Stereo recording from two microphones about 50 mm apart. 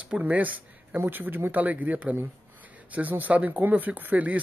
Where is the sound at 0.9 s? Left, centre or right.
Right.